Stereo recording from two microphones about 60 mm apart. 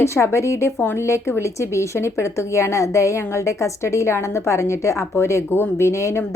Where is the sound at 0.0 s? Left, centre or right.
Left.